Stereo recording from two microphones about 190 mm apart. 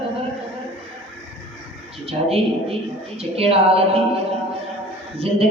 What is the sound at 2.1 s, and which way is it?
Speech, 30° right (ahead or behind).